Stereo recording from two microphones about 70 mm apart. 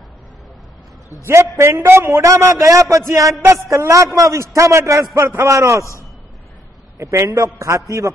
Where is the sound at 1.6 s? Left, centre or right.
Right.